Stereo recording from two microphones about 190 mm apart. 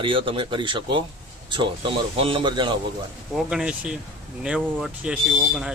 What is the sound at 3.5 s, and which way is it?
Speech, 5° right (ahead or behind).